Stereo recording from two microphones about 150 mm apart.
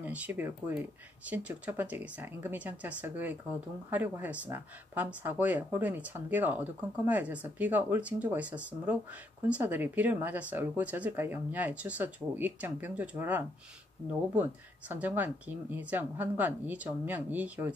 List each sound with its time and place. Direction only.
0.0 s speech: 10° right (ahead or behind)